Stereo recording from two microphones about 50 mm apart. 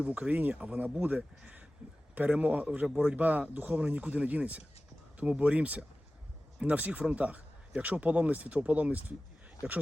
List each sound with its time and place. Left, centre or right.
0.0 s speech: right